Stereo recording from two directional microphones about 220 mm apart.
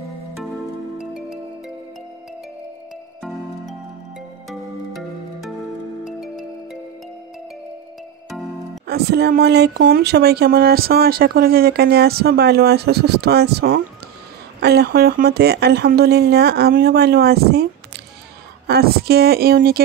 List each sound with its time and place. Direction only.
0.9 s music: centre (ahead or behind)
3.2 s music: centre (ahead or behind)
8.8 s speech: 45° right (ahead or behind)
18.7 s speech: 45° right (ahead or behind)